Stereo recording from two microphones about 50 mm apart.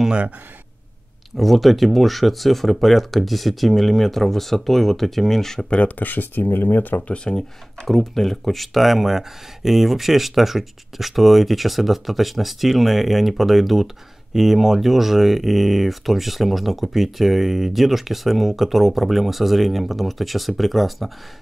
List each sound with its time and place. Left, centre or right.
1.3 s speech: centre
5.7 s speech: left
7.3 s speech: centre